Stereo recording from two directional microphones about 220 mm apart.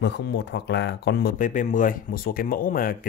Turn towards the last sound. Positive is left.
turn(degrees=40)  # may be behind; listen again after turning